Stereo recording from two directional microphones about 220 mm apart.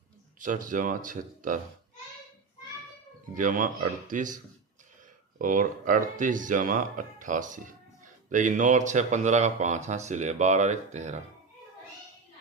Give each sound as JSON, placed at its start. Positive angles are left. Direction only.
{"t": 0.3, "sound": "speech", "side_deg": -35}
{"t": 3.3, "sound": "speech", "side_deg": -35}
{"t": 5.4, "sound": "speech", "side_deg": -35}